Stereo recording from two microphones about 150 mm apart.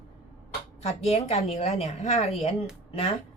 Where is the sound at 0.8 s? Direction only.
45° left (ahead or behind).